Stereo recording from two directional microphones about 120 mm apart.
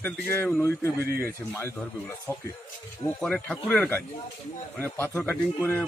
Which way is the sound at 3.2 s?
5° left (ahead or behind).